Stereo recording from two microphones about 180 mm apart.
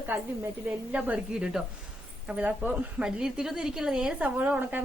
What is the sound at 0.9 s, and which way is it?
Speech, 10° right (ahead or behind).